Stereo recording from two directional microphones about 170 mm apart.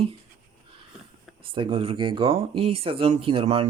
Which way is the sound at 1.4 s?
30° right (ahead or behind).